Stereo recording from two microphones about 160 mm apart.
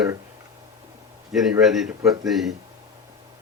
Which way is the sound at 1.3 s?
Centre (ahead or behind).